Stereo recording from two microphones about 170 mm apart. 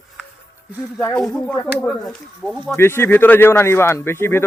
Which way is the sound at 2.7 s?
15° left (ahead or behind).